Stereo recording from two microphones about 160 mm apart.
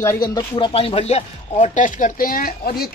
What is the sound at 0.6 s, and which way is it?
Speech, 35° left (ahead or behind).